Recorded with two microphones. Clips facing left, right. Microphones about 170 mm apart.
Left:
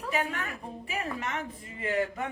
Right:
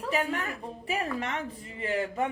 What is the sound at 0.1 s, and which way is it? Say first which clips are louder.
A woman's voice: right 2 dB; 30° right (ahead or behind).